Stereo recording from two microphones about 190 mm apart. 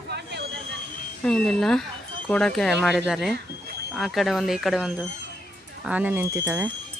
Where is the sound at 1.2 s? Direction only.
5° left (ahead or behind); by 6.6 s 15° right (ahead or behind).